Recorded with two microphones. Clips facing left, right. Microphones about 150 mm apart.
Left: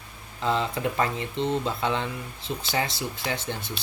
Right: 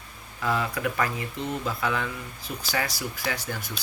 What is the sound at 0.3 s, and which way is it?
Mantra, 25° left (ahead or behind).